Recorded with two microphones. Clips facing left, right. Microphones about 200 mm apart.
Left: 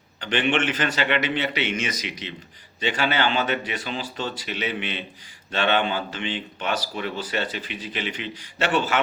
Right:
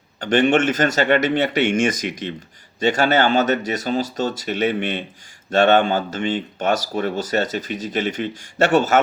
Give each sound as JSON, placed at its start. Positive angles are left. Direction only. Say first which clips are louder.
{"t": 0.2, "sound": "speech", "louder": "right 7 dB", "side_deg": -45}